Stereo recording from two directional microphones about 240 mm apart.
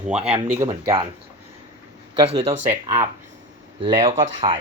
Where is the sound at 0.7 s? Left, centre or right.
Right.